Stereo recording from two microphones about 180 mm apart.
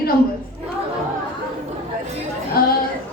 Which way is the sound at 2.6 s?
55° left (ahead or behind).